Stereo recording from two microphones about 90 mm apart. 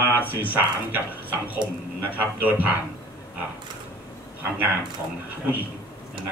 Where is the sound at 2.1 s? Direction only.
20° right (ahead or behind).